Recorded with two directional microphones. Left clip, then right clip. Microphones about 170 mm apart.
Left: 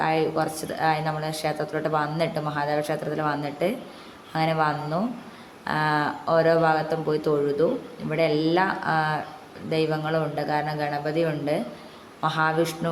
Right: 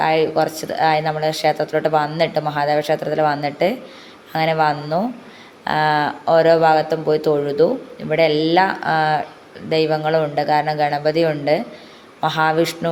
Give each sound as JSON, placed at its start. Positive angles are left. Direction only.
{"t": 0.0, "sound": "speech", "side_deg": -15}